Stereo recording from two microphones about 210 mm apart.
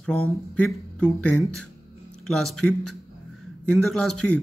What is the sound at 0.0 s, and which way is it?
Speech, 5° left (ahead or behind).